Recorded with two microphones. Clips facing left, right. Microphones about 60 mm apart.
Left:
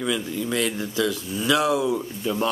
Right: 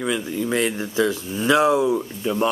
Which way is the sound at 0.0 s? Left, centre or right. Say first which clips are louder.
Right 2 dB; right.